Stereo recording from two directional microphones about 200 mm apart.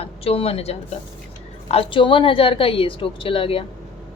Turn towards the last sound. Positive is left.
turn(degrees=30)  # may be behind; listen again after turning